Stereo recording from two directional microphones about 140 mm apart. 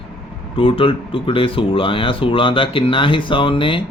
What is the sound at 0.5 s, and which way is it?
Speech, 40° left (ahead or behind).